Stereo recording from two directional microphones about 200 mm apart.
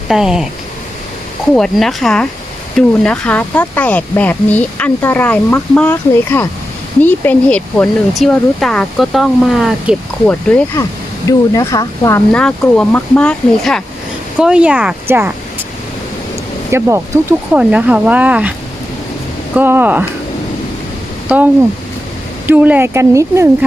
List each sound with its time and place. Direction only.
0.1 s speech: 5° right (ahead or behind)
1.5 s speech: centre (ahead or behind)
12.3 s speech: 5° left (ahead or behind); by 15.6 s 10° right (ahead or behind)
16.7 s speech: 10° right (ahead or behind)
19.5 s speech: 10° right (ahead or behind)
21.3 s speech: 5° right (ahead or behind)